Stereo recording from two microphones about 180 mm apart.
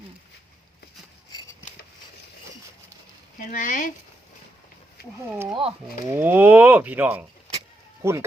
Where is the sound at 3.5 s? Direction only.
45° left (ahead or behind).